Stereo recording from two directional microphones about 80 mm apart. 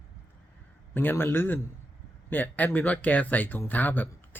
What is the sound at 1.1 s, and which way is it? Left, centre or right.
A man's voice, left.